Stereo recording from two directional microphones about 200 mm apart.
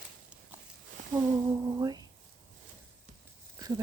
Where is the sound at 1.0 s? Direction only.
40° right (ahead or behind).